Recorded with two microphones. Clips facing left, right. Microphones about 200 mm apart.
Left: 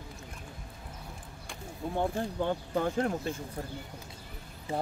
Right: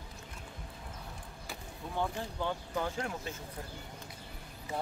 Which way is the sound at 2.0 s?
50° left (ahead or behind).